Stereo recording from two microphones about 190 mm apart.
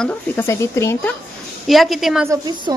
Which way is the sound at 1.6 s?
Centre (ahead or behind).